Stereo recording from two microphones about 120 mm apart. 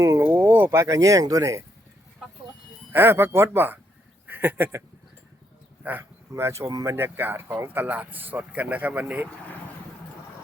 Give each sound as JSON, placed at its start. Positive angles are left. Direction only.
{"t": 0.0, "sound": "speech", "side_deg": -25}
{"t": 2.9, "sound": "speech", "side_deg": -20}
{"t": 4.3, "sound": "a sound", "side_deg": -15}
{"t": 5.8, "sound": "speech", "side_deg": -15}
{"t": 6.9, "sound": "speech", "side_deg": -20}